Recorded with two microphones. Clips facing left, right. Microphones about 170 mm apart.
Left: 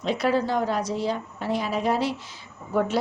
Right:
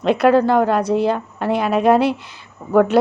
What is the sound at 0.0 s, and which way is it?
A woman's voice, 60° right (ahead or behind).